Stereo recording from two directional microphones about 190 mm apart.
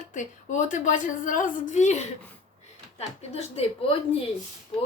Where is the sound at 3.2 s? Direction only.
35° left (ahead or behind).